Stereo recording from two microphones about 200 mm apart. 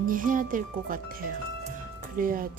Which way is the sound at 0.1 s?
40° right (ahead or behind).